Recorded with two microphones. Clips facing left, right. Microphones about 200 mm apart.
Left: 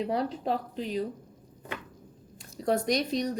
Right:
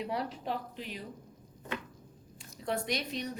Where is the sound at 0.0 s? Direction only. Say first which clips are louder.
Left 6 dB; 35° left (ahead or behind).